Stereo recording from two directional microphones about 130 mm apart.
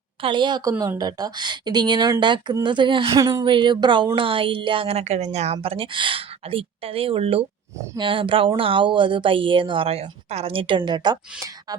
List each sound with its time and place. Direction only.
0.2 s speech: 40° right (ahead or behind)
3.1 s speech: 25° right (ahead or behind)
3.4 s a woman's voice: 40° right (ahead or behind)